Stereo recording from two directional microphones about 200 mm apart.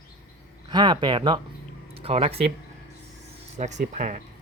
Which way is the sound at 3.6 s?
35° right (ahead or behind).